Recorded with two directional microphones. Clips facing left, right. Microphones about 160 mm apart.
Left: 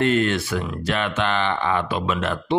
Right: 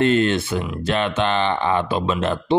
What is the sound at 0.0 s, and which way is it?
Speech, 25° right (ahead or behind).